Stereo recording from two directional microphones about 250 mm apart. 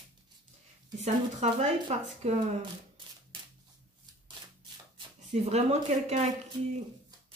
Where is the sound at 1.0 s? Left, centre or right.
Right.